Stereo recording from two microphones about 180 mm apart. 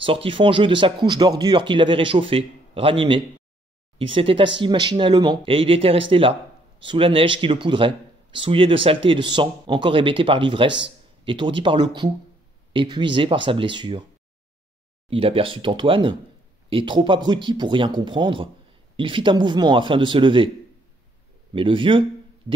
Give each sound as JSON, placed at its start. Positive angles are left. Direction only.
{"t": 0.0, "sound": "speech", "side_deg": -30}
{"t": 15.0, "sound": "speech", "side_deg": -30}
{"t": 21.5, "sound": "speech", "side_deg": -30}